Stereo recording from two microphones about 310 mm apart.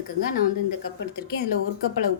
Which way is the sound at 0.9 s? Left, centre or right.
Left.